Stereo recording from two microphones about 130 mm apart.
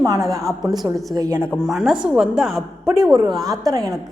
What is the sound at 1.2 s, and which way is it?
Speech, 20° right (ahead or behind).